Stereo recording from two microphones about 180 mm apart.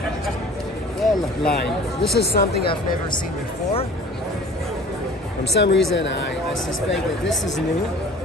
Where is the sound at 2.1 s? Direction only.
60° left (ahead or behind).